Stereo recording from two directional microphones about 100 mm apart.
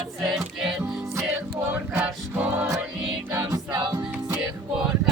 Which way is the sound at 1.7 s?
10° right (ahead or behind).